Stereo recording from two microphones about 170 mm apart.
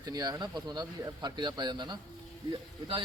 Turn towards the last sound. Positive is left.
turn(degrees=-30)  # may be behind; listen again after turning